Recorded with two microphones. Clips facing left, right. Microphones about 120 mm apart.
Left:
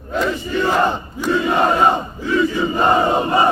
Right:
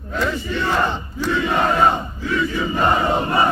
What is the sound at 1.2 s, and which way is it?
Crowd, 15° left (ahead or behind).